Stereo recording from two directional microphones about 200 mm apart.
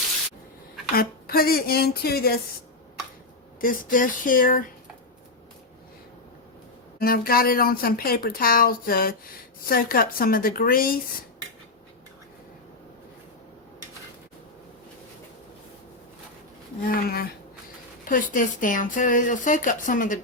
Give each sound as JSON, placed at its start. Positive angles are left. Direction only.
{"t": 0.9, "sound": "speech", "side_deg": 50}
{"t": 3.6, "sound": "speech", "side_deg": 45}
{"t": 7.0, "sound": "speech", "side_deg": 45}
{"t": 16.8, "sound": "speech", "side_deg": 45}